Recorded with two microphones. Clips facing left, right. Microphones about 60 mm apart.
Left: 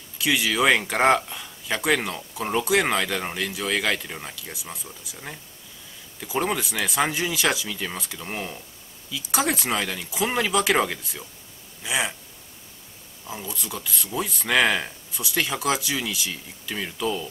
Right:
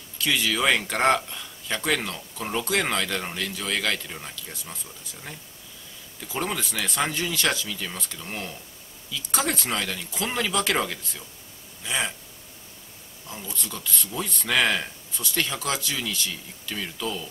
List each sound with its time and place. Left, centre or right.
0.2 s speech: centre
13.3 s speech: centre